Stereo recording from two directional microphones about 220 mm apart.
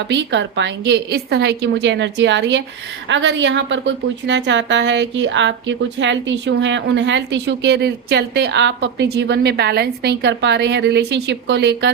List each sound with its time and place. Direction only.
0.1 s a woman's voice: 55° right (ahead or behind)